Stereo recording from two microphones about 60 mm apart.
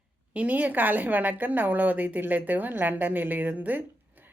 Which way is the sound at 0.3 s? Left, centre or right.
Right.